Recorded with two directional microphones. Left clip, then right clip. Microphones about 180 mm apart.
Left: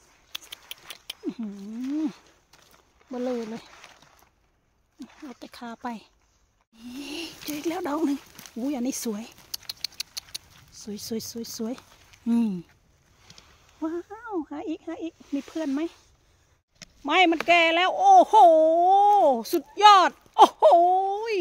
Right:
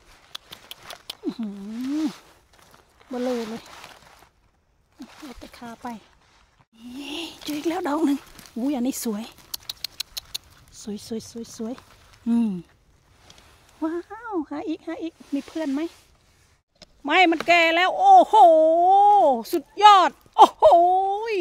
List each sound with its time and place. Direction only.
0.3 s a sound: 15° right (ahead or behind)
3.1 s speech: 25° right (ahead or behind)
3.7 s a sound: 60° right (ahead or behind)
5.3 s speech: 5° right (ahead or behind)
6.9 s a sound: 15° right (ahead or behind)
8.6 s rodents: 20° right (ahead or behind)
11.0 s speech: 5° right (ahead or behind)
12.3 s speech: 15° right (ahead or behind)
13.3 s speech: 30° right (ahead or behind)
17.0 s speech: 25° right (ahead or behind)